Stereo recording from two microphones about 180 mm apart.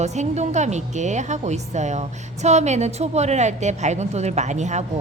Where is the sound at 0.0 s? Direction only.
40° right (ahead or behind).